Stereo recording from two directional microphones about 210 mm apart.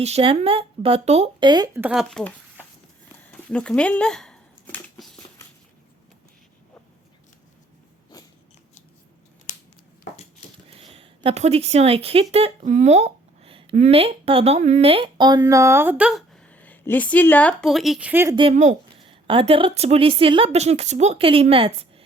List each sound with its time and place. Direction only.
0.0 s a woman's voice: 30° right (ahead or behind); by 2.3 s centre (ahead or behind)
3.5 s a sound: 5° left (ahead or behind)
10.7 s speech: 25° right (ahead or behind); by 18.3 s 10° right (ahead or behind)
18.3 s a woman's voice: 30° right (ahead or behind)